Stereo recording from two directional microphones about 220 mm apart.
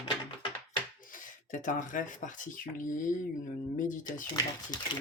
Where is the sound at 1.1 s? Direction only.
35° left (ahead or behind).